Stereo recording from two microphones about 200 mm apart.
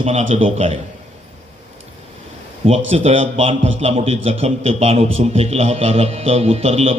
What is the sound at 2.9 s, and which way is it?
A man's voice, 30° right (ahead or behind).